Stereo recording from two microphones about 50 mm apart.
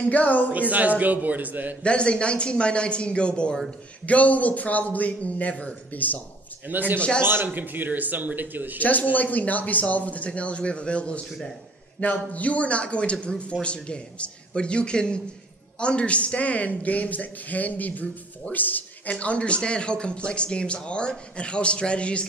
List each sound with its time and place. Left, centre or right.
0.0 s a man's voice: left
0.5 s a man's voice: right
1.8 s a man's voice: left
5.9 s a man's voice: left
6.7 s a man's voice: right
7.2 s a man's voice: right
7.4 s a man's voice: right
8.7 s a man's voice: left
11.2 s a man's voice: centre
12.0 s a man's voice: left
19.1 s a man's voice: left